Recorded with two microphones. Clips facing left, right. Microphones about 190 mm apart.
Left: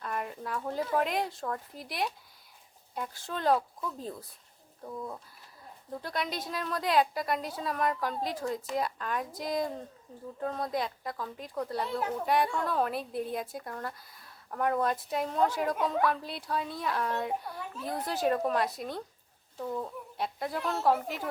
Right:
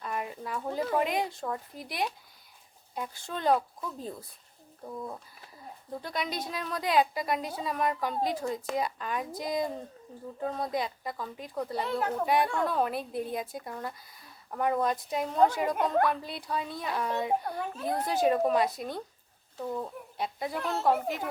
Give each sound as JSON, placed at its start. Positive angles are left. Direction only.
{"t": 0.0, "sound": "a woman's voice", "side_deg": -5}
{"t": 17.4, "sound": "a child's voice", "side_deg": -55}
{"t": 17.8, "sound": "a woman's voice", "side_deg": 0}